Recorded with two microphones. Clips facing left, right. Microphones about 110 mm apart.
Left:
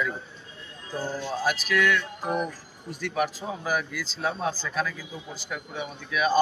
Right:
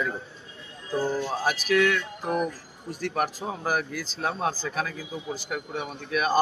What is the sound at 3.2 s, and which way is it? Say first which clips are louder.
Speech: left 1 dB; 45° right (ahead or behind).